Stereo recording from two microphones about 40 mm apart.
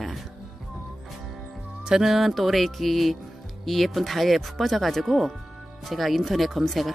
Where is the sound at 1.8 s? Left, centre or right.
Centre.